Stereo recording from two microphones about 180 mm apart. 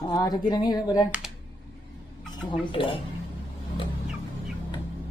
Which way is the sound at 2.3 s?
25° left (ahead or behind).